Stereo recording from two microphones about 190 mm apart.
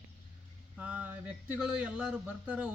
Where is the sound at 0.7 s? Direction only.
5° right (ahead or behind).